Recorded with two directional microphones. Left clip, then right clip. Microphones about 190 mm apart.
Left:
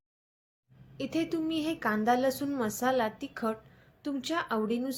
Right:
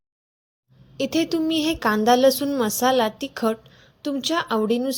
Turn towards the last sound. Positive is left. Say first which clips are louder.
# right 9 dB
turn(degrees=-35)  # may be behind; listen again after turning